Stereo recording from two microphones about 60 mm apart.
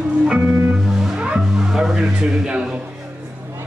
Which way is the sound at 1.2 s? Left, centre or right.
Centre.